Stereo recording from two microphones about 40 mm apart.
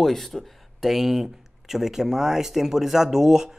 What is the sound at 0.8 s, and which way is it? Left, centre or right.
Speech, centre.